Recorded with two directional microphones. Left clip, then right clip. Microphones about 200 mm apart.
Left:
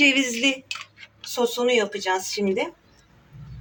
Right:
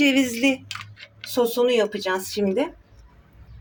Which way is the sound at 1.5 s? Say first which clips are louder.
Right 1 dB; 45° right (ahead or behind).